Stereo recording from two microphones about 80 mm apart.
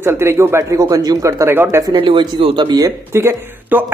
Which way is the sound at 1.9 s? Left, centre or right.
Right.